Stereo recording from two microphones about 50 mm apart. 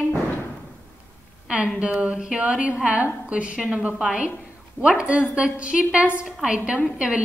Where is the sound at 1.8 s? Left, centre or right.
Right.